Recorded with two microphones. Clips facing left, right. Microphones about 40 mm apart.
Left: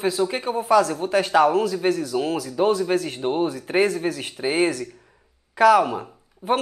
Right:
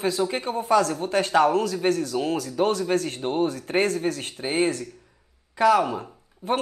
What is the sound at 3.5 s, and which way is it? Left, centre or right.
Speech, left.